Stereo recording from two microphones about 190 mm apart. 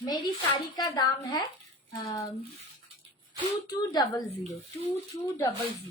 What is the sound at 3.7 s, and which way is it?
Speech, 20° left (ahead or behind).